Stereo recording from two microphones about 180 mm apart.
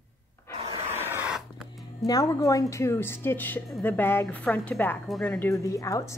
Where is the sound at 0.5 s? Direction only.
35° right (ahead or behind).